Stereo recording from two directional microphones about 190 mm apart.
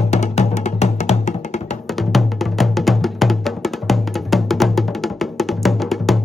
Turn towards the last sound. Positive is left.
turn(degrees=0)  # may be behind; listen again after turning